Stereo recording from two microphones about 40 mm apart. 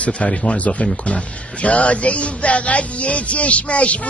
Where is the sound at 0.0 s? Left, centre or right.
Left.